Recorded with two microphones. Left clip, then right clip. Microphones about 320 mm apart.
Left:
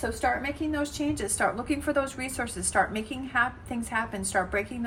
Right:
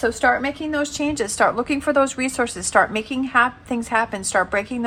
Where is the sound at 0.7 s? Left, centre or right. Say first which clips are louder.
Right 7 dB; centre.